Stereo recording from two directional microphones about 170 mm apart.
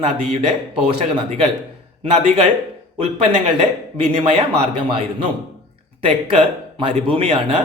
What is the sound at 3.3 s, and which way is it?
Speech, 35° right (ahead or behind).